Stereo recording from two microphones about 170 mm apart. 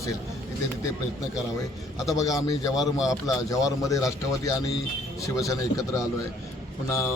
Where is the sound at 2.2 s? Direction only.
20° left (ahead or behind).